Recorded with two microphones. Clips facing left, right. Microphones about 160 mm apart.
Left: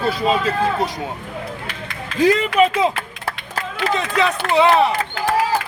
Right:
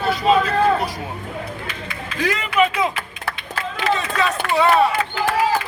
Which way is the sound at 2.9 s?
40° left (ahead or behind).